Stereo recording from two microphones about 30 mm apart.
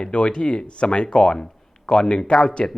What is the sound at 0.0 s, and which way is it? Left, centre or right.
A man's voice, left.